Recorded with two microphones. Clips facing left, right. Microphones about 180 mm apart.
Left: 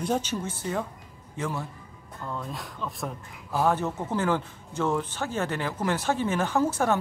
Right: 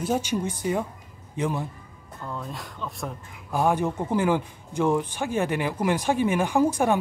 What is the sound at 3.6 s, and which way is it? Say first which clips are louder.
Speech: right 2 dB; 10° right (ahead or behind).